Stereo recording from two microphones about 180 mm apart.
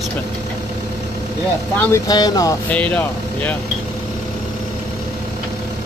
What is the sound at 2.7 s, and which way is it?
Speech, 10° left (ahead or behind).